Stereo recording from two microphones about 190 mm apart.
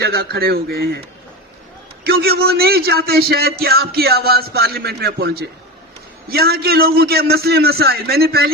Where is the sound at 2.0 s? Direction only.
55° right (ahead or behind).